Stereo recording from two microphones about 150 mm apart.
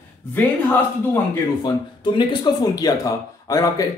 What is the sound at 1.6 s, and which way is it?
Speech, 30° left (ahead or behind).